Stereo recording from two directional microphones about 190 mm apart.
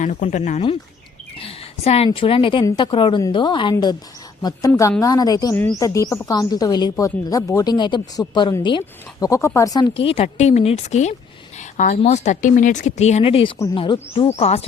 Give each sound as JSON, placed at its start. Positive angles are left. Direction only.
{"t": 0.0, "sound": "speech", "side_deg": 40}
{"t": 1.4, "sound": "a sound", "side_deg": 30}
{"t": 2.0, "sound": "speech", "side_deg": 30}
{"t": 10.0, "sound": "speech", "side_deg": 30}